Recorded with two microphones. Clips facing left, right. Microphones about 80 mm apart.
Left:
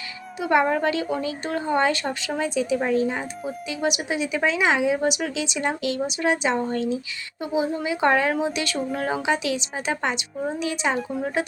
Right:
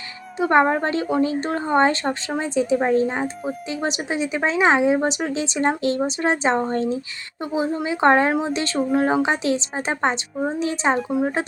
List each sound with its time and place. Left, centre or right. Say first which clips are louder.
0.3 s speech: right 3 dB; right
11.1 s speech: right 4 dB; right